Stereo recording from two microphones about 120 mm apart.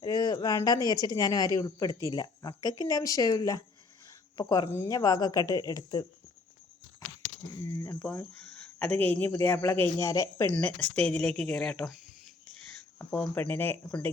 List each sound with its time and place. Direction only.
0.0 s speech: 35° left (ahead or behind)
7.6 s speech: 25° left (ahead or behind)
8.1 s speech: 10° left (ahead or behind); by 10.4 s 25° left (ahead or behind)
10.4 s speech: 10° left (ahead or behind)
13.1 s speech: 10° left (ahead or behind)